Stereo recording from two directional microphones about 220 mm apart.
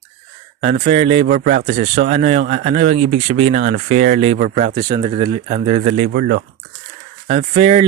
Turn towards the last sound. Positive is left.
turn(degrees=-25)  # may be behind; listen again after turning